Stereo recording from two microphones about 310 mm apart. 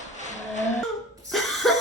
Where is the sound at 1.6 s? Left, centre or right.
Centre.